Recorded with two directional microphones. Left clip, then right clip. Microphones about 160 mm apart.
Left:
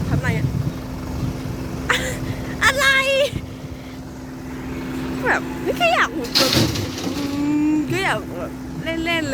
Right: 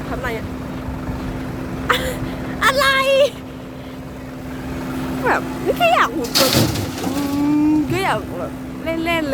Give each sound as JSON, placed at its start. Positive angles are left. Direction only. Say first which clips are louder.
{"t": 0.1, "sound": "speech", "louder": "right 1 dB", "side_deg": -5}
{"t": 1.9, "sound": "vehicle", "louder": "right 2 dB", "side_deg": 0}
{"t": 2.6, "sound": "speech", "louder": "right 1 dB", "side_deg": 0}
{"t": 4.9, "sound": "vehicle", "louder": "right 2 dB", "side_deg": -70}
{"t": 5.8, "sound": "speech", "louder": "right 2 dB", "side_deg": -10}
{"t": 6.2, "sound": "a sound", "louder": "right 1 dB", "side_deg": -90}
{"t": 7.6, "sound": "boat", "louder": "right 2 dB", "side_deg": -10}
{"t": 8.8, "sound": "speech", "louder": "right 2 dB", "side_deg": -10}